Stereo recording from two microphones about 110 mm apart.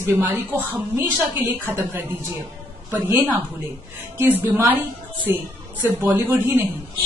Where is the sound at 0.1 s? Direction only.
20° right (ahead or behind).